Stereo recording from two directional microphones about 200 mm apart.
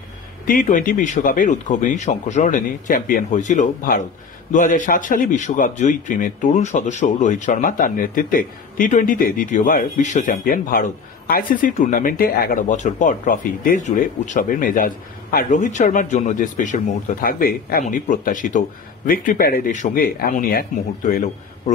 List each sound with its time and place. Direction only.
0.5 s a man's voice: 40° left (ahead or behind)